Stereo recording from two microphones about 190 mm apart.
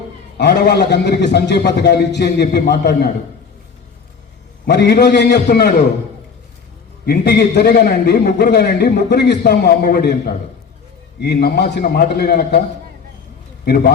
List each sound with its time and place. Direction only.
0.3 s a man's voice: 60° left (ahead or behind)
4.6 s a man's voice: 60° left (ahead or behind)
7.0 s a man's voice: 55° left (ahead or behind)
13.7 s a man's voice: 50° left (ahead or behind)